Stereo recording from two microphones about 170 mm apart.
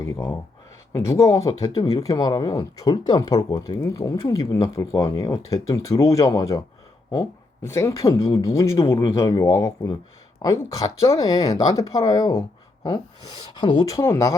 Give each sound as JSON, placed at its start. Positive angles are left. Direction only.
{"t": 0.0, "sound": "speech", "side_deg": 20}